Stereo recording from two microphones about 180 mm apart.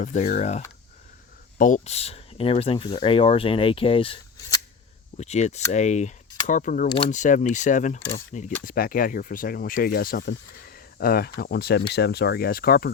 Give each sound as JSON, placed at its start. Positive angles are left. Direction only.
{"t": 0.0, "sound": "speech", "side_deg": 45}